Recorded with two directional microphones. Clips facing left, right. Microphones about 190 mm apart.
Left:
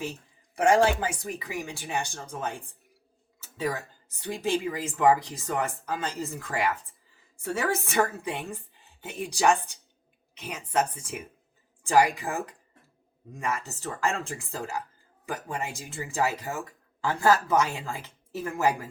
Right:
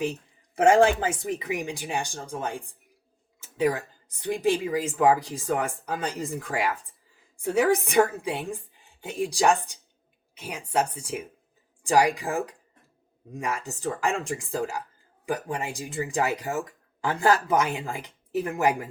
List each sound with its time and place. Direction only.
0.6 s speech: 25° right (ahead or behind)
10.3 s speech: 10° right (ahead or behind)
13.4 s speech: 15° right (ahead or behind)